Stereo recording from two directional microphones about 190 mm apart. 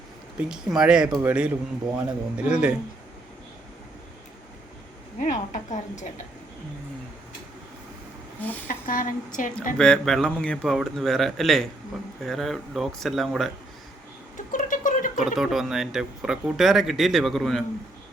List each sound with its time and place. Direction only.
0.3 s speech: 5° right (ahead or behind)
5.2 s a woman's voice: 40° left (ahead or behind)
8.4 s speech: 10° left (ahead or behind)
8.6 s a woman's voice: 45° left (ahead or behind)
9.7 s speech: 5° left (ahead or behind)
14.3 s a sound: 45° left (ahead or behind)
15.2 s speech: centre (ahead or behind)